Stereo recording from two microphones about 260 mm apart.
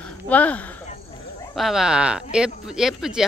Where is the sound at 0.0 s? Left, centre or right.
Centre.